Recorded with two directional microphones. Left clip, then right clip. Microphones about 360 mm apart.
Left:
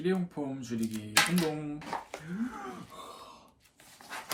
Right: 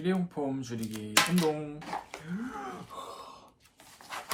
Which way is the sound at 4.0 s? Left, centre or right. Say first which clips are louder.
Right 2 dB; centre.